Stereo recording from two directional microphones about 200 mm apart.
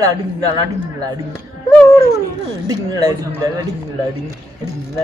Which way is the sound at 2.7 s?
20° right (ahead or behind).